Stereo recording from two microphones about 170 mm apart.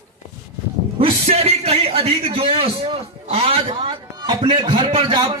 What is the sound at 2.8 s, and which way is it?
A man's voice, 35° right (ahead or behind).